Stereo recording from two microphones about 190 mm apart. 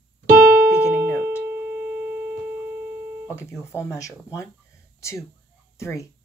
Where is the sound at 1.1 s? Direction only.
10° right (ahead or behind).